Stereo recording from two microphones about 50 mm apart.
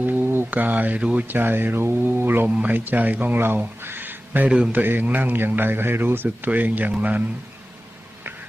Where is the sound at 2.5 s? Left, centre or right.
Right.